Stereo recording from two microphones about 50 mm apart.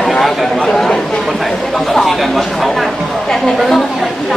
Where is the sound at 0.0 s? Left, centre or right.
Centre.